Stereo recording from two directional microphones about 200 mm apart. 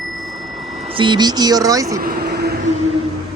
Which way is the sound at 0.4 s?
25° right (ahead or behind).